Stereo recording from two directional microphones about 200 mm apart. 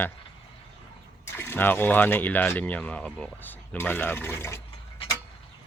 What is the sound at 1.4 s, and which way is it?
Speech, 10° left (ahead or behind).